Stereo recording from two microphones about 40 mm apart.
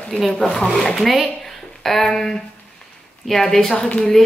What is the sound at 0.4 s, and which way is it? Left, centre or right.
Speech, centre.